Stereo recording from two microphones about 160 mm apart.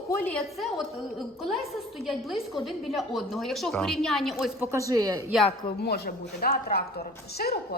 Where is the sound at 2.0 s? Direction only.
Centre (ahead or behind).